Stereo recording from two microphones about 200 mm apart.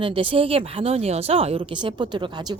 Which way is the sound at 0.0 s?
25° right (ahead or behind).